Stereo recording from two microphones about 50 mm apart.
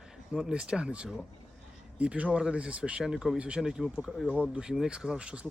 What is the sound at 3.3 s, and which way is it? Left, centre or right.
Speech, centre.